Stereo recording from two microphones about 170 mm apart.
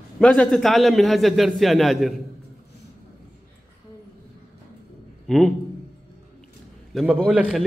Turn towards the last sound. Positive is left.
turn(degrees=-5)  # may be behind; listen again after turning